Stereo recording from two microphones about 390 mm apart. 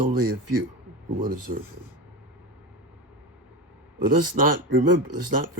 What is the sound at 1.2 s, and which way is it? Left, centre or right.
Speech, right.